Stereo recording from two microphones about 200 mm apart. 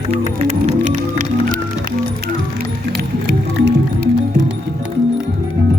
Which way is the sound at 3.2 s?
60° right (ahead or behind).